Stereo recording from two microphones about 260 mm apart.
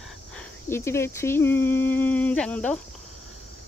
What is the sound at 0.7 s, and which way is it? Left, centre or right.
Speech, centre.